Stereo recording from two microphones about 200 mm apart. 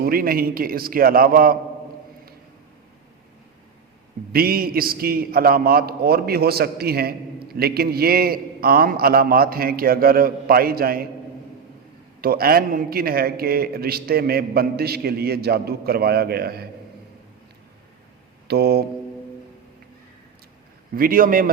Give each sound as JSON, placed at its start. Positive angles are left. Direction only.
{"t": 0.0, "sound": "a man's voice", "side_deg": -50}
{"t": 4.3, "sound": "a man's voice", "side_deg": -50}
{"t": 12.2, "sound": "a man's voice", "side_deg": -50}
{"t": 18.4, "sound": "a man's voice", "side_deg": -55}
{"t": 20.9, "sound": "a man's voice", "side_deg": -45}